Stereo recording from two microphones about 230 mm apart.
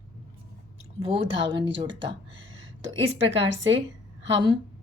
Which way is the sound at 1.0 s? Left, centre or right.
Right.